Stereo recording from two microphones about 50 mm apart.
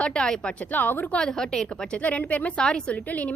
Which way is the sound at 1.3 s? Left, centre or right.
Centre.